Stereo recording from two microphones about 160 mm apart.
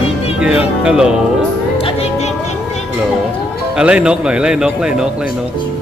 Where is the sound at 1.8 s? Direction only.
40° left (ahead or behind).